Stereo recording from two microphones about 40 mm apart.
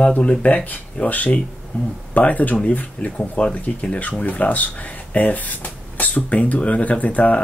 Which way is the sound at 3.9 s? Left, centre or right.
Left.